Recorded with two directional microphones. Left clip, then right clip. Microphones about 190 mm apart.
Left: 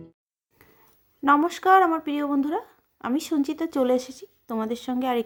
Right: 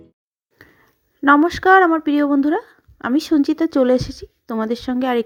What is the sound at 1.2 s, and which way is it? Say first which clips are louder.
Speech: right 6 dB; 25° right (ahead or behind).